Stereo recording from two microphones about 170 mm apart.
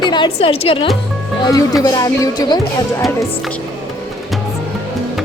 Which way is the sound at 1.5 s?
20° left (ahead or behind).